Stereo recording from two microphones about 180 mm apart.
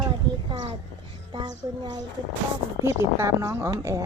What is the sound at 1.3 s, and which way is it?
A child's voice, 25° right (ahead or behind).